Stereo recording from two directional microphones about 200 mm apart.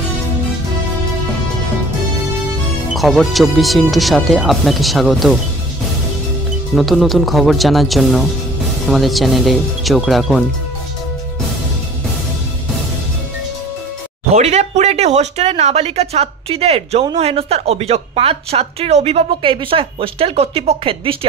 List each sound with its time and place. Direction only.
2.9 s speech: centre (ahead or behind)
6.7 s speech: centre (ahead or behind)
14.3 s speech: 35° right (ahead or behind)